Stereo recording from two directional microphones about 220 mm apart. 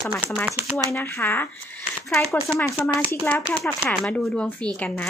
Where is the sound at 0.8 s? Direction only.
10° left (ahead or behind).